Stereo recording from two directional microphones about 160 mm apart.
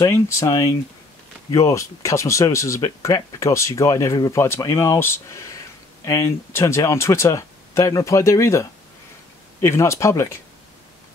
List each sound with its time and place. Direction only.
0.0 s speech: 20° left (ahead or behind)